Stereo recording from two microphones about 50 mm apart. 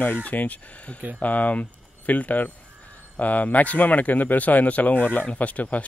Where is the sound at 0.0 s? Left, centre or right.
Left.